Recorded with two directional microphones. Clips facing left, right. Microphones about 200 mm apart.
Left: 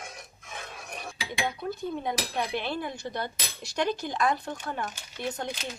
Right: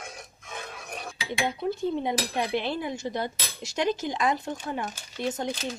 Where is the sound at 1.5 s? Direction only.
25° right (ahead or behind).